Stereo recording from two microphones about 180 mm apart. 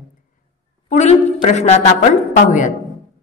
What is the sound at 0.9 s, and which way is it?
A woman's voice, 40° left (ahead or behind).